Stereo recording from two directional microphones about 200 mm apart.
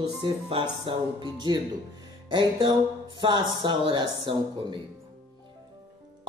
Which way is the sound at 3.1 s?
25° right (ahead or behind).